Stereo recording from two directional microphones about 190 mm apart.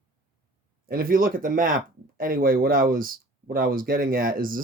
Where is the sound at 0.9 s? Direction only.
50° right (ahead or behind).